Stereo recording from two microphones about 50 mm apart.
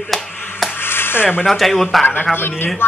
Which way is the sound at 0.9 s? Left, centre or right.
Left.